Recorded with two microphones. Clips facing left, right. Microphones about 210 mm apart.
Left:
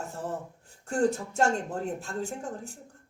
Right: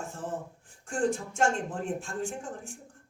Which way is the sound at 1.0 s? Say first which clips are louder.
Left 2 dB; 40° left (ahead or behind).